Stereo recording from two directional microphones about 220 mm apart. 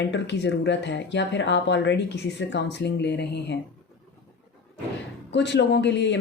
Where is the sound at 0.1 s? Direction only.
55° left (ahead or behind).